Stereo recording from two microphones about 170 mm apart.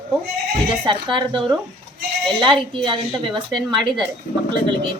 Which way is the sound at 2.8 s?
30° right (ahead or behind).